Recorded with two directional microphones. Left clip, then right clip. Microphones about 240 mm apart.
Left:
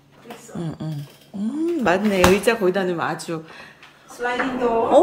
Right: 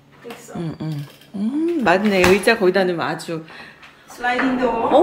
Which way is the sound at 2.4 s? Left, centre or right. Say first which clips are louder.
Right 4 dB; centre.